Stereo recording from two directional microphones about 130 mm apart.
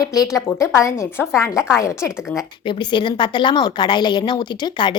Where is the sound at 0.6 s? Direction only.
25° left (ahead or behind).